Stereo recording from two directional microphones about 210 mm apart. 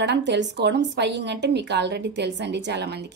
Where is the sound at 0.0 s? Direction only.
55° right (ahead or behind).